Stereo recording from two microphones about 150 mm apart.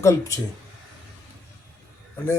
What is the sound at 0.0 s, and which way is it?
Speech, 20° left (ahead or behind).